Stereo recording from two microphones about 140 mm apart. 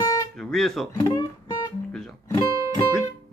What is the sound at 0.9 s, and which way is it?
Guitar, 25° left (ahead or behind).